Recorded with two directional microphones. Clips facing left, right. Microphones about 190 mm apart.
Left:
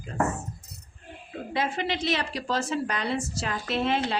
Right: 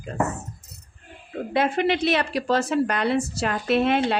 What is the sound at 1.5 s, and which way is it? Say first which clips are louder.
Speech: right 7 dB; 60° right (ahead or behind).